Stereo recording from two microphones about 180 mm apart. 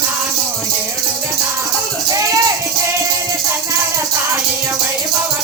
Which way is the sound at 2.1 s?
20° right (ahead or behind).